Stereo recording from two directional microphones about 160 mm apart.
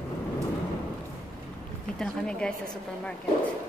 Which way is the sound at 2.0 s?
5° left (ahead or behind).